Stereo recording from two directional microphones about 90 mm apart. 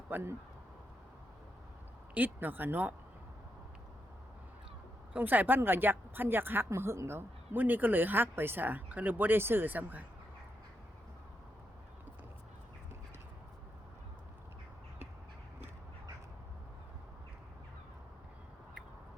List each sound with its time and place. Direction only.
0.1 s speech: 30° right (ahead or behind)
2.1 s speech: 20° right (ahead or behind)
5.1 s speech: 20° right (ahead or behind)